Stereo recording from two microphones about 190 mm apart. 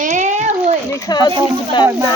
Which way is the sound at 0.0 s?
40° right (ahead or behind).